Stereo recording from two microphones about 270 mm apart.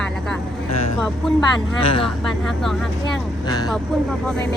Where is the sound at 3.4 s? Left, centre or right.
Centre.